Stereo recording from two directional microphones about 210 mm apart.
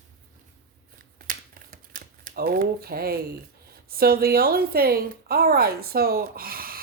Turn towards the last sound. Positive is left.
turn(degrees=-45)  # may be behind; listen again after turning